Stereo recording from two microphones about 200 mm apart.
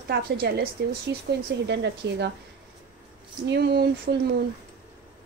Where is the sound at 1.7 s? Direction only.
60° right (ahead or behind).